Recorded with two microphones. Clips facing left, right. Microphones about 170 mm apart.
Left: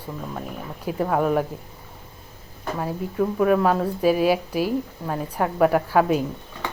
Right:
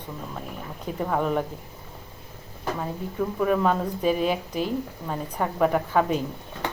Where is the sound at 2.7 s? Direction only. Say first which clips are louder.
Left 6 dB; 5° left (ahead or behind).